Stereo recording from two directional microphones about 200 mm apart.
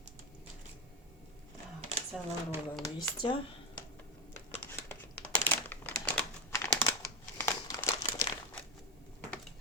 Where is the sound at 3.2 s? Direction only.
25° left (ahead or behind).